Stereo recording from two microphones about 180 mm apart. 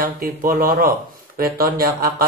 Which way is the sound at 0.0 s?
50° right (ahead or behind).